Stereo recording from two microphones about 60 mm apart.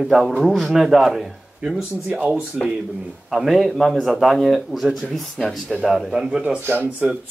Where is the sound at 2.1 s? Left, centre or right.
Right.